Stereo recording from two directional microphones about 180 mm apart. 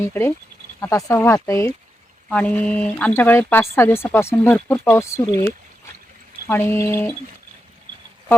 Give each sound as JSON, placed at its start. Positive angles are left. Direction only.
{"t": 0.0, "sound": "speech", "side_deg": 15}
{"t": 6.5, "sound": "speech", "side_deg": 15}